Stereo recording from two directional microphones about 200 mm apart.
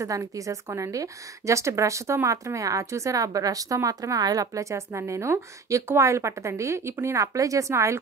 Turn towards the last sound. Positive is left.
turn(degrees=-15)  # may be behind; listen again after turning